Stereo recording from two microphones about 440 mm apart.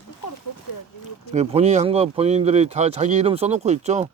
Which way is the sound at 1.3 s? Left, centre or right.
Centre.